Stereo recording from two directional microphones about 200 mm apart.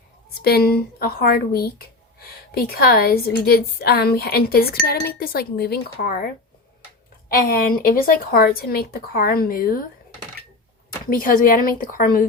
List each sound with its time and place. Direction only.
0.4 s a woman's voice: 50° left (ahead or behind)
11.0 s a woman's voice: 45° left (ahead or behind)